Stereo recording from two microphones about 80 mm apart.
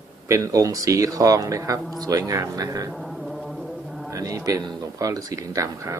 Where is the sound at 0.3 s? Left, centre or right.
Right.